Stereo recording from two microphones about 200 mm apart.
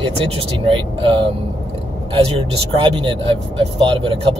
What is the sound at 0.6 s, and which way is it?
Speech, 25° right (ahead or behind).